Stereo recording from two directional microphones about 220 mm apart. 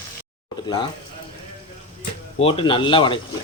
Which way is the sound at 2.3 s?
25° left (ahead or behind).